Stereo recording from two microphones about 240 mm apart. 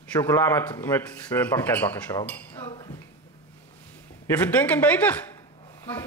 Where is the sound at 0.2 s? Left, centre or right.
Centre.